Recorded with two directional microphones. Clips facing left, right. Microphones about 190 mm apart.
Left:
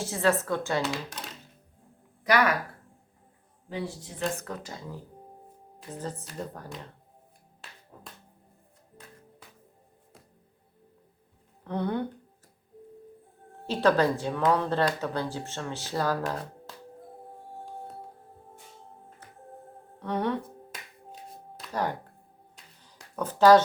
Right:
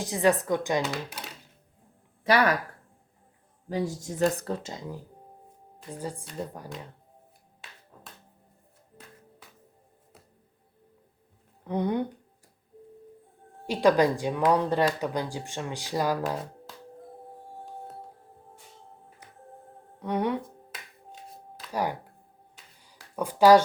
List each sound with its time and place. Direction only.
0.0 s speech: 15° right (ahead or behind)
0.8 s speech: centre (ahead or behind)
2.2 s speech: 30° right (ahead or behind)
3.7 s speech: 40° right (ahead or behind); by 4.9 s 20° right (ahead or behind)
6.0 s speech: 10° right (ahead or behind)
7.9 s music: 5° left (ahead or behind)
11.6 s speech: 15° right (ahead or behind)
13.7 s speech: 15° right (ahead or behind)
20.0 s speech: 10° right (ahead or behind)
21.6 s music: 10° right (ahead or behind)
22.5 s a sound: 10° right (ahead or behind)